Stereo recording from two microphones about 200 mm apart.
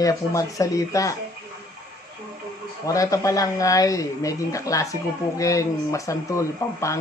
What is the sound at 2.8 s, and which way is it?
Speech, 15° left (ahead or behind).